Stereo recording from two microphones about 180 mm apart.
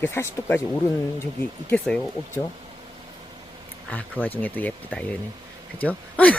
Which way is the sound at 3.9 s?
10° left (ahead or behind).